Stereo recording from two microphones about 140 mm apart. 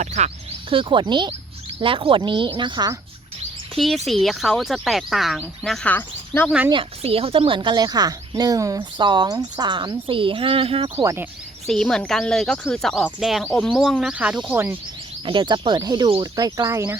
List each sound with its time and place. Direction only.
0.0 s speech: 55° right (ahead or behind)
0.7 s speech: 40° right (ahead or behind)
3.8 s speech: centre (ahead or behind)
7.0 s speech: 45° right (ahead or behind)
10.9 s speech: 20° right (ahead or behind)
11.7 s speech: 5° left (ahead or behind); by 14.8 s 15° right (ahead or behind)
15.3 s speech: 35° right (ahead or behind)